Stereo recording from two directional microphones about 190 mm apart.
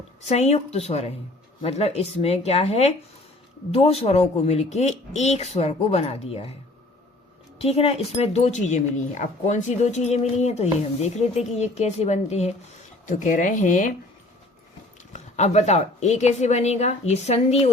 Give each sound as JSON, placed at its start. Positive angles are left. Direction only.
{"t": 0.3, "sound": "speech", "side_deg": 35}
{"t": 7.6, "sound": "speech", "side_deg": 30}
{"t": 15.1, "sound": "speech", "side_deg": 35}